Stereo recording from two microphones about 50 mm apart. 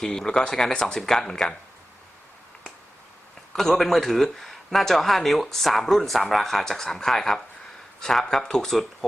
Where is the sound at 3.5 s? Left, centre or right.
Centre.